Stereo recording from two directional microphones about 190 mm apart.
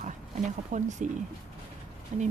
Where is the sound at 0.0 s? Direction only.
40° right (ahead or behind).